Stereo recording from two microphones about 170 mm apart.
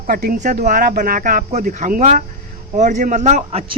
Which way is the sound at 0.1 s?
55° right (ahead or behind).